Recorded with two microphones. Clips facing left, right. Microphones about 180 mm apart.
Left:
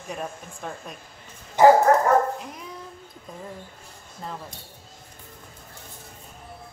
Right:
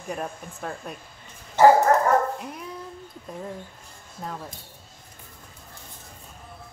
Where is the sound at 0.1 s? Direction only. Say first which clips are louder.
Right 2 dB; 5° right (ahead or behind).